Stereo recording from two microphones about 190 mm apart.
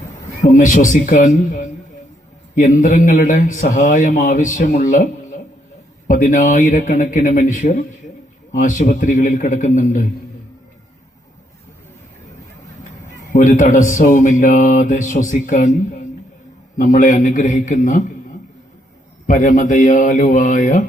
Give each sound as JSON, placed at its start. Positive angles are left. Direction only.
{"t": 0.5, "sound": "a man's voice", "side_deg": 40}
{"t": 13.3, "sound": "a man's voice", "side_deg": 45}
{"t": 19.3, "sound": "a man's voice", "side_deg": 45}